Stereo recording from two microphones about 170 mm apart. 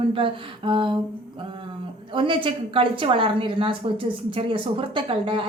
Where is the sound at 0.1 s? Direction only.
30° right (ahead or behind).